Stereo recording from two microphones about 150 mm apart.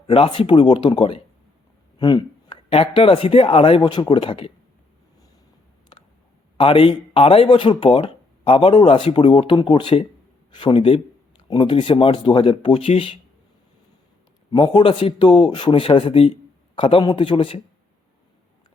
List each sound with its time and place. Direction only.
0.1 s speech: 35° left (ahead or behind)
3.8 s speech: 25° left (ahead or behind)
6.6 s speech: 35° left (ahead or behind)
14.5 s speech: 35° left (ahead or behind)